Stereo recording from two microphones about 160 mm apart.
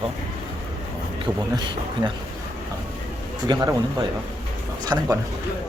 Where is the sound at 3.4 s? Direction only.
25° right (ahead or behind).